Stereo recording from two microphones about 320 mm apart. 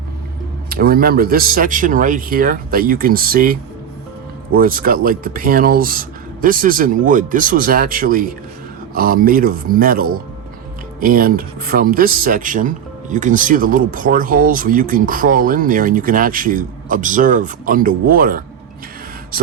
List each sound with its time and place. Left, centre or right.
0.7 s speech: right